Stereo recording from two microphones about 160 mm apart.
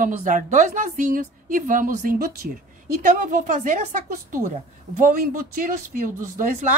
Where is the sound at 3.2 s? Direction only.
55° right (ahead or behind).